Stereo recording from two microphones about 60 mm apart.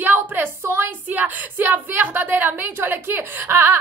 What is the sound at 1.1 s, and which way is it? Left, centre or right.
A woman's voice, right.